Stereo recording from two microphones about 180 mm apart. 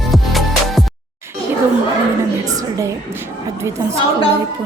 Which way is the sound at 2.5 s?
20° right (ahead or behind).